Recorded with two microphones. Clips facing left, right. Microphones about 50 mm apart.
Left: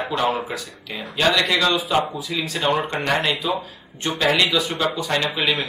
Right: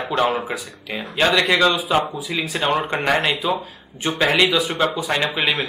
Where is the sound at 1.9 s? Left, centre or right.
Centre.